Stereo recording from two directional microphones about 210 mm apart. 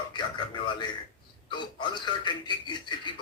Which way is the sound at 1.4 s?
20° left (ahead or behind).